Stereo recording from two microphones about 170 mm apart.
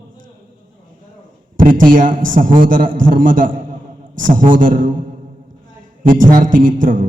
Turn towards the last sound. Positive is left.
turn(degrees=-50)  # may be behind; listen again after turning